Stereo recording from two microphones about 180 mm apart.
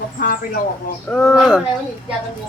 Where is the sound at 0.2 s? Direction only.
50° left (ahead or behind).